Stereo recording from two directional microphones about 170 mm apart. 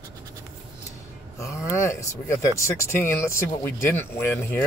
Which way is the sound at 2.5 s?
15° left (ahead or behind).